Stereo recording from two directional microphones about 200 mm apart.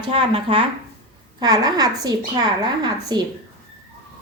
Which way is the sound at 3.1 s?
20° right (ahead or behind).